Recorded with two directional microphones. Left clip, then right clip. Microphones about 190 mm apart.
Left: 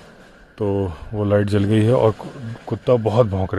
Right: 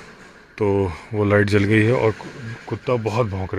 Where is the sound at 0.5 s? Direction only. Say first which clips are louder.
Right 2 dB; 15° left (ahead or behind).